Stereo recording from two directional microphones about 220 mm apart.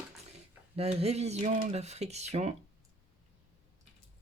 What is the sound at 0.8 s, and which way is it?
Speech, 25° right (ahead or behind).